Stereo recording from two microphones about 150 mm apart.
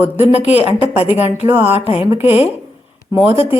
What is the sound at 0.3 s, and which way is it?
Speech, 45° left (ahead or behind).